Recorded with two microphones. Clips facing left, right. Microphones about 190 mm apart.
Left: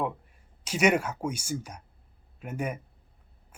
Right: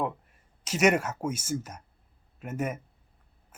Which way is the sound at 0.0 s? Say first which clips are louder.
Even; centre (ahead or behind).